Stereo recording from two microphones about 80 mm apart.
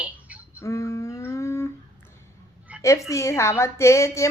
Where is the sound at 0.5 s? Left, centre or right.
Left.